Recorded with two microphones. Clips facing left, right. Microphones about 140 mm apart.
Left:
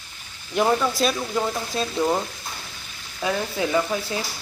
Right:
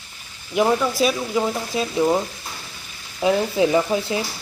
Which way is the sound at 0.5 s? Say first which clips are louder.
Right 2 dB; 5° right (ahead or behind).